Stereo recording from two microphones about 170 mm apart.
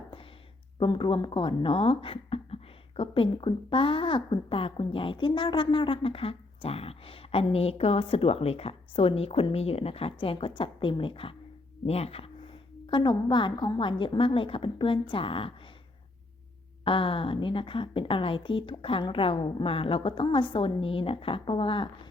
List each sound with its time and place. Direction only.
0.8 s speech: 25° left (ahead or behind)
16.8 s speech: 30° left (ahead or behind)